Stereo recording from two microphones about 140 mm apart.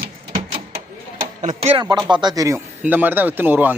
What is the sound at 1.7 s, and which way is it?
Speech, 30° right (ahead or behind).